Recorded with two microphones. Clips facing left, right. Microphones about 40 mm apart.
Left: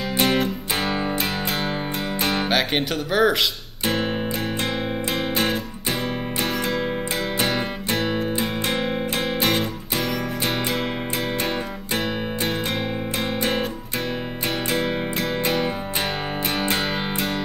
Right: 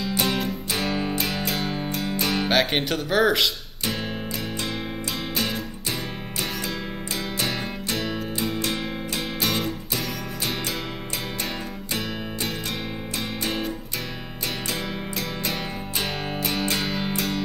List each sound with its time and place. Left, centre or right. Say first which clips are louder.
0.1 s music: left 6 dB; left
0.8 s music: left 2 dB; left
1.5 s music: left 2 dB; left
2.4 s speech: even; centre
3.8 s music: left 6 dB; left
7.3 s music: left 4 dB; left
13.4 s music: left 5 dB; left
15.4 s music: left 6 dB; left